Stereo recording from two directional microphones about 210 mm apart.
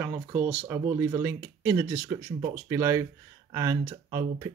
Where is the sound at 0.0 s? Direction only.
10° right (ahead or behind).